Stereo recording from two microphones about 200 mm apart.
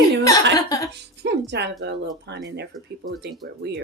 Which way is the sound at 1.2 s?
60° right (ahead or behind).